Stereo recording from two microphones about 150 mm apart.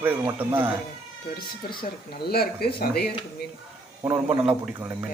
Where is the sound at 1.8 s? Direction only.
90° left.